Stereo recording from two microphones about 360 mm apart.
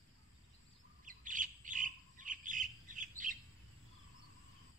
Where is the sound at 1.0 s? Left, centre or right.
Right.